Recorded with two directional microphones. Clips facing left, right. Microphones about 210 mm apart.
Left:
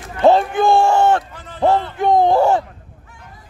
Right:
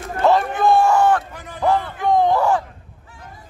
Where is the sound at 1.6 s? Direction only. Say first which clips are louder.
Left 3 dB; 25° left (ahead or behind).